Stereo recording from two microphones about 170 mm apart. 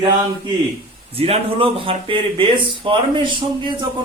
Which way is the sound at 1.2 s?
35° right (ahead or behind).